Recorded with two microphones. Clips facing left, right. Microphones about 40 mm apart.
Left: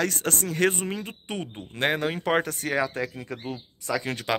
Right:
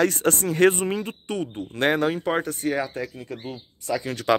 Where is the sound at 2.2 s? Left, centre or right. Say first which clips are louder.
Even; left.